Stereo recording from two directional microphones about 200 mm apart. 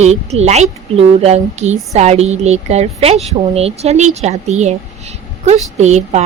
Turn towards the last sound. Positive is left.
turn(degrees=-35)  # may be behind; listen again after turning